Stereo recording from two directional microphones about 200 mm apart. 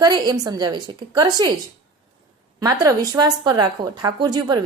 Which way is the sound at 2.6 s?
15° right (ahead or behind).